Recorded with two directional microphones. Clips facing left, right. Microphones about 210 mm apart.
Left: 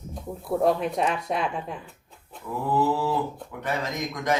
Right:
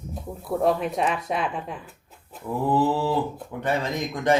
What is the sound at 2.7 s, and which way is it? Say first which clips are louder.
Speech: right 1 dB; 30° right (ahead or behind).